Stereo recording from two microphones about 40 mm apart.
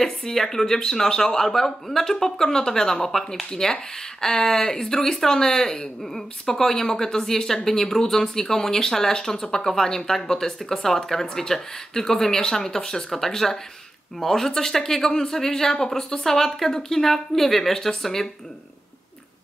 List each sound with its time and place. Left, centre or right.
0.0 s speech: centre